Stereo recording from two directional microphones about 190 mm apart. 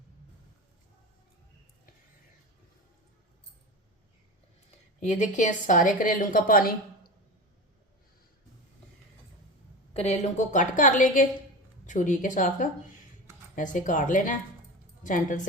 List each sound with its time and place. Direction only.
4.9 s a woman's voice: 40° left (ahead or behind)
9.9 s a woman's voice: 35° left (ahead or behind)